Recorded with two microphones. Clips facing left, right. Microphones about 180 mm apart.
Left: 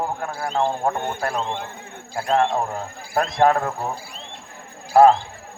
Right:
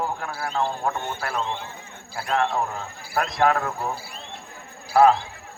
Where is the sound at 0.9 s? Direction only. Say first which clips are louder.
Left 3 dB; 50° left (ahead or behind).